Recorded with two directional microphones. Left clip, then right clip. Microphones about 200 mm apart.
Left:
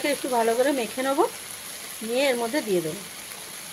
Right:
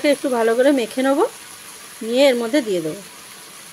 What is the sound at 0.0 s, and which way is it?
Speech, 50° right (ahead or behind).